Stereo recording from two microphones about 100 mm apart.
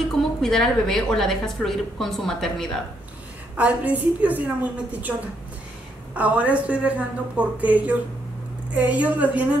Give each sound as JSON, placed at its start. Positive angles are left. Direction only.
{"t": 0.2, "sound": "a woman's voice", "side_deg": 5}
{"t": 3.5, "sound": "a woman's voice", "side_deg": -15}
{"t": 6.1, "sound": "a woman's voice", "side_deg": -15}